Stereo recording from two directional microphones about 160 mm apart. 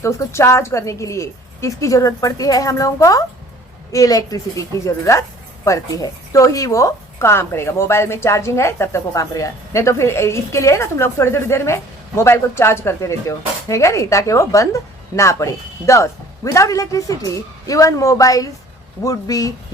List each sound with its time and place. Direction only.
0.0 s speech: 20° left (ahead or behind)